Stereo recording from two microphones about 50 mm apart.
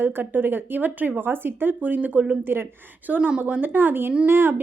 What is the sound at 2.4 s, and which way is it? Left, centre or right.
Speech, right.